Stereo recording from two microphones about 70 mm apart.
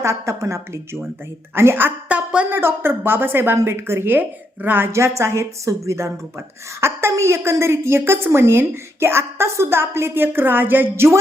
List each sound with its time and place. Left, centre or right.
0.0 s a woman's voice: right; by 2.5 s centre
2.5 s a woman's voice: right
4.9 s a woman's voice: right